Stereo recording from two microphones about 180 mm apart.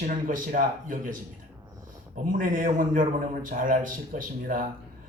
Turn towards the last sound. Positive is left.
turn(degrees=-50)  # may be behind; listen again after turning